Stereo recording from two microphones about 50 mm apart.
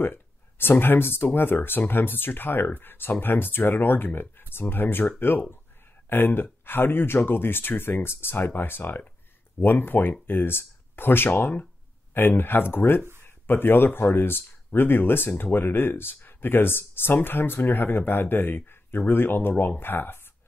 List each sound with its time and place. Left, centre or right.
0.0 s speech: left